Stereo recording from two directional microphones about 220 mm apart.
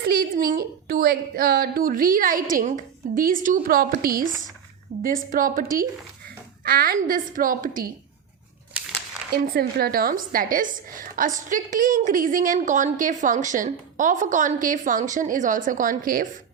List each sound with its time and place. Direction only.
0.1 s a woman's voice: 40° right (ahead or behind)
6.7 s a woman's voice: 40° right (ahead or behind)
8.7 s a sound: 5° right (ahead or behind)
9.5 s a woman's voice: 45° right (ahead or behind)